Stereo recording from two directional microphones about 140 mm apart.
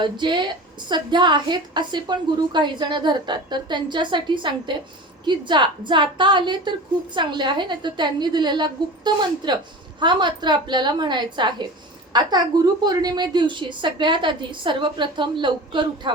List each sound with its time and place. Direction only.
0.0 s a woman's voice: 35° right (ahead or behind)